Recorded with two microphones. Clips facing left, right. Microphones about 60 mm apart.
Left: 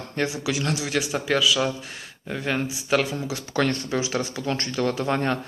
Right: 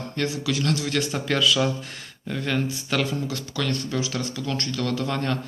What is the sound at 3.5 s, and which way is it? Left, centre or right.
Speech, left.